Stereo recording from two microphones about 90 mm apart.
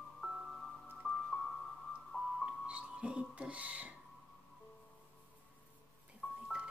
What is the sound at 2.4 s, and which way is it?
Music, 15° right (ahead or behind).